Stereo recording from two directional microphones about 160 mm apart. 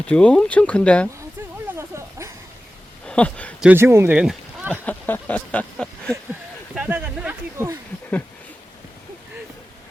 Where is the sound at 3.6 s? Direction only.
10° right (ahead or behind).